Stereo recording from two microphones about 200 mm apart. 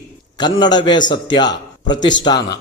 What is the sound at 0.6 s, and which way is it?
A man's voice, 20° left (ahead or behind).